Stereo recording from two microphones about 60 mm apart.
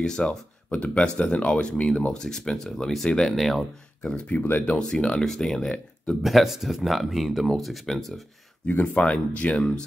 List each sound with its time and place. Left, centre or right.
0.0 s speech: centre
4.3 s speech: left
4.6 s speech: centre
6.2 s speech: centre
8.6 s speech: left